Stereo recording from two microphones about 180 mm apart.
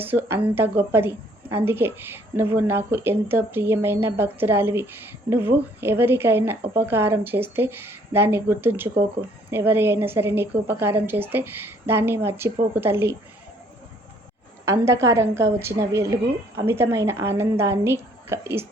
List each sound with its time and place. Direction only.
0.0 s a woman's voice: 10° right (ahead or behind)
14.6 s a woman's voice: 15° right (ahead or behind)